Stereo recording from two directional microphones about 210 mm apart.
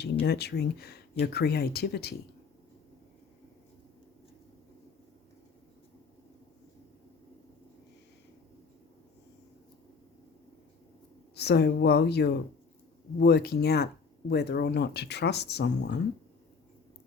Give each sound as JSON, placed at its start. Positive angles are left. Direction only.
{"t": 0.0, "sound": "speech", "side_deg": 50}
{"t": 11.3, "sound": "speech", "side_deg": 50}